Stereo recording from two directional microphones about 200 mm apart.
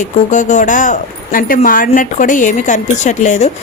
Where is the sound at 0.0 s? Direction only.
40° left (ahead or behind).